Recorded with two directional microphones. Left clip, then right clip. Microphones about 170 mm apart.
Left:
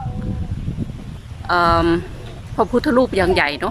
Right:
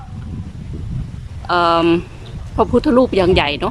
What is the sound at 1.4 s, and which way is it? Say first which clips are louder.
Speech: right 2 dB; 10° right (ahead or behind).